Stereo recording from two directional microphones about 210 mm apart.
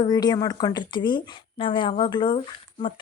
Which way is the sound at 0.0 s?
20° left (ahead or behind).